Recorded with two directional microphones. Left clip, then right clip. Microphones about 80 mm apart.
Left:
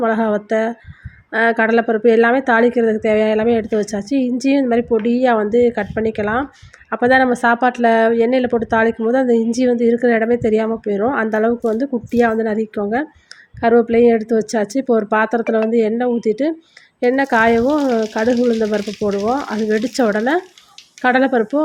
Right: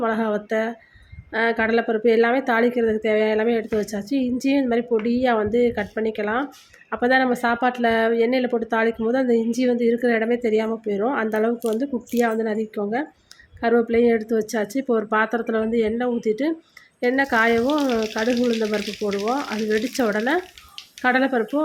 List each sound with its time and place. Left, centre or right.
0.0 s speech: left
19.7 s speech: left